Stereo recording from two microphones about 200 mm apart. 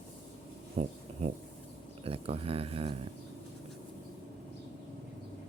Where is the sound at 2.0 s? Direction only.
30° right (ahead or behind).